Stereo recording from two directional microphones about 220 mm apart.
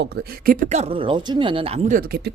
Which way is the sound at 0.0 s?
45° right (ahead or behind).